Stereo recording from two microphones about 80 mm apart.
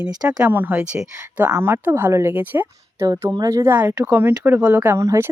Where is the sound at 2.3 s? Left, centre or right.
Right.